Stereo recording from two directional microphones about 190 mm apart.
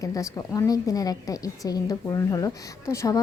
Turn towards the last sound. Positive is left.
turn(degrees=15)  # may be behind; listen again after turning